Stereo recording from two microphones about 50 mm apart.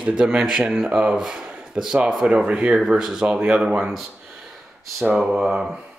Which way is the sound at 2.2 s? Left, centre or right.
Centre.